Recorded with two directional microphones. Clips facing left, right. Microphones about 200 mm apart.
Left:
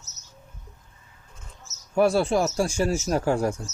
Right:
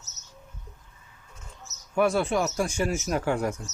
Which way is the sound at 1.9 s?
35° left (ahead or behind).